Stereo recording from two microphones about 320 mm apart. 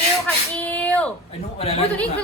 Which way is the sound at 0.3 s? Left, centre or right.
Centre.